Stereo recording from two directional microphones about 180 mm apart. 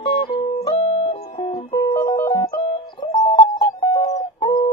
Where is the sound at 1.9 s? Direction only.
20° left (ahead or behind).